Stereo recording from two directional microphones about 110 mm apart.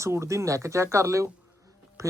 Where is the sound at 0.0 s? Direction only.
25° right (ahead or behind).